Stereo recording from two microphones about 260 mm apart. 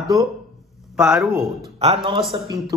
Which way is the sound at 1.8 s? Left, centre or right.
Right.